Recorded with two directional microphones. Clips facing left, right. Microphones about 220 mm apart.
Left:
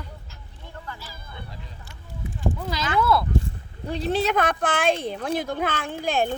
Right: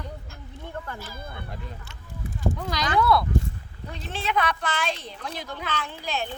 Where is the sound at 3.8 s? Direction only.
35° left (ahead or behind).